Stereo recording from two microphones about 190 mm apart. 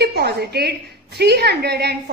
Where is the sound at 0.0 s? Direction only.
55° right (ahead or behind).